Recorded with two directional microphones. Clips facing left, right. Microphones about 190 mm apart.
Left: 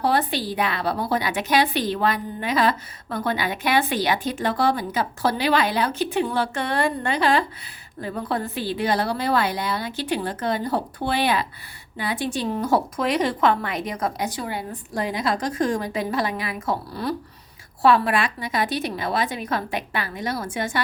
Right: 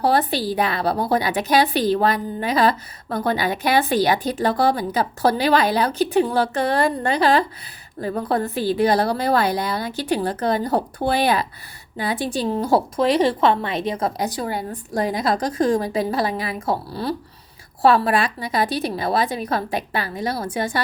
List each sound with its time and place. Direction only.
0.0 s a woman's voice: 35° right (ahead or behind)